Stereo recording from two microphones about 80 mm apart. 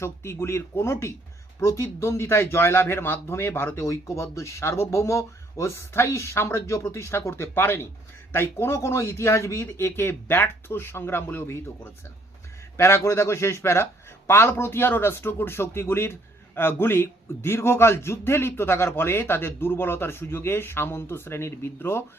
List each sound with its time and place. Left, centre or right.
0.0 s speech: left
12.7 s a man's voice: left